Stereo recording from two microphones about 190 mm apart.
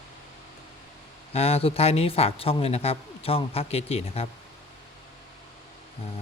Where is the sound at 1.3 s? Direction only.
30° left (ahead or behind).